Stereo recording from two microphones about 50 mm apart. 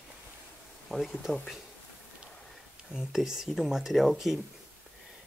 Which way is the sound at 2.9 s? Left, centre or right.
Centre.